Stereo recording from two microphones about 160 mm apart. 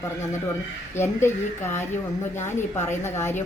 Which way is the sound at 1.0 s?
15° left (ahead or behind).